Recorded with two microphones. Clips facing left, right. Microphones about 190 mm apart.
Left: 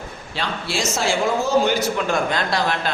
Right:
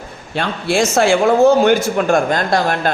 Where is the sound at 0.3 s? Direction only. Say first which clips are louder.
Right 9 dB; 55° right (ahead or behind).